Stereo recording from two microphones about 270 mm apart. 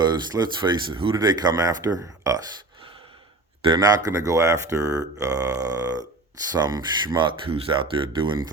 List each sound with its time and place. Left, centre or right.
0.0 s speech: centre
3.6 s speech: centre